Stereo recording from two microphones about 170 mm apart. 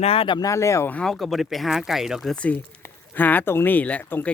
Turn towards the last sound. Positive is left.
turn(degrees=10)  # may be behind; listen again after turning